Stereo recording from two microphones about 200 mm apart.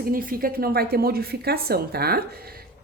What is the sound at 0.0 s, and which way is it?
A woman's voice, 45° right (ahead or behind).